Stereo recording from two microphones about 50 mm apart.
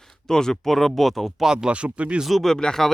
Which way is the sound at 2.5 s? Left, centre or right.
Centre.